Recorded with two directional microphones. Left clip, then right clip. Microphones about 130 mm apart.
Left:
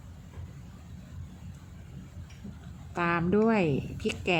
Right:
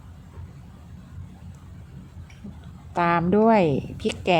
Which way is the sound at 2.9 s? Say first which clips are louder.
Right 7 dB; 40° right (ahead or behind).